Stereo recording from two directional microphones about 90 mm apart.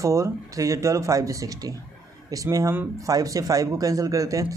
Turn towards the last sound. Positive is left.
turn(degrees=-40)  # may be behind; listen again after turning